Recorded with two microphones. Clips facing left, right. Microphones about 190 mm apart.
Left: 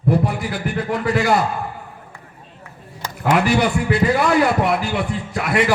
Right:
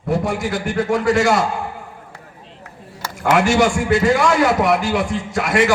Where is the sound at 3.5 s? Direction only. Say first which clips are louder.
Right 2 dB; 90° right.